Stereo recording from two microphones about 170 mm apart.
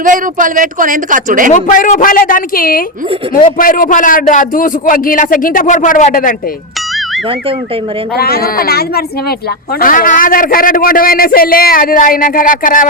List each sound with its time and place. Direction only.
0.0 s a man's voice: 50° right (ahead or behind)
1.5 s a man's voice: 50° left (ahead or behind)
8.1 s speech: 65° left (ahead or behind)